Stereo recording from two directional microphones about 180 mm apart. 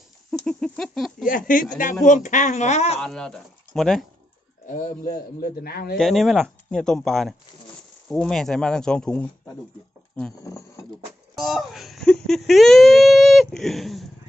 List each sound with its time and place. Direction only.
0.4 s a sound: 5° left (ahead or behind)
1.2 s speech: 50° left (ahead or behind)
3.0 s speech: 5° left (ahead or behind)
4.6 s speech: 45° left (ahead or behind)
6.0 s speech: centre (ahead or behind)
10.4 s speech: 20° left (ahead or behind)
11.3 s speech: centre (ahead or behind)